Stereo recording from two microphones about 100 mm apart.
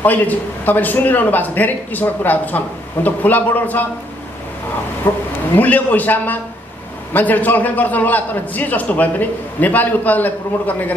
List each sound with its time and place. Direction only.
0.0 s a man's voice: 15° left (ahead or behind)
5.1 s a man's voice: 20° left (ahead or behind)